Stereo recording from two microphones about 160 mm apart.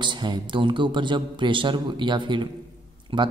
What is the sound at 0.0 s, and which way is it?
A man's voice, 30° right (ahead or behind).